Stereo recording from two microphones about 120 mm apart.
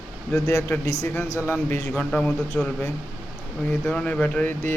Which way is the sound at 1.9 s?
10° left (ahead or behind).